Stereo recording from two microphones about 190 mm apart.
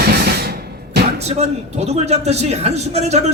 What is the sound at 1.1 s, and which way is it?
A man's voice, 35° right (ahead or behind).